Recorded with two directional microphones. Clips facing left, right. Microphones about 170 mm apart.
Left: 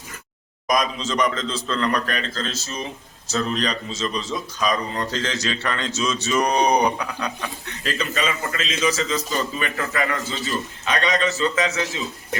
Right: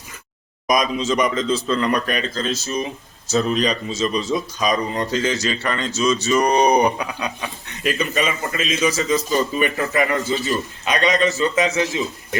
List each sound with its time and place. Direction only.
0.7 s a man's voice: 10° right (ahead or behind)